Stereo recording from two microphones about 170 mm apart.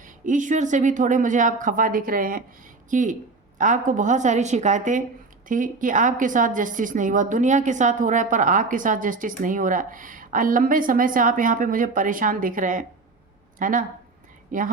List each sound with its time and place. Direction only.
0.0 s a woman's voice: 50° right (ahead or behind)